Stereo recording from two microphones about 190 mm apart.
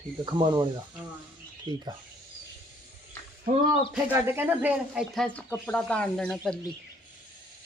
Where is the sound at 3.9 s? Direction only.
10° right (ahead or behind).